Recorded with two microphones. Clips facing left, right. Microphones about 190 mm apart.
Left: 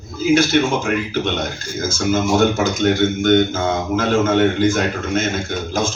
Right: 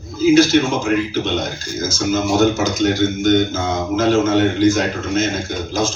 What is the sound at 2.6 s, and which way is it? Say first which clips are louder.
Speech: even; 55° left (ahead or behind).